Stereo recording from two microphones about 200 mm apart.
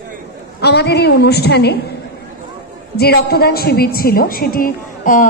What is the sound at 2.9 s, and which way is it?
A woman's voice, 50° left (ahead or behind).